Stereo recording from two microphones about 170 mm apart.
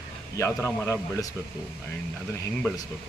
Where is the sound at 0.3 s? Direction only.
15° left (ahead or behind).